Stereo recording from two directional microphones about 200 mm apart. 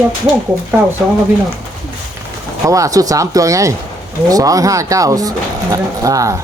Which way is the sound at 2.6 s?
15° right (ahead or behind).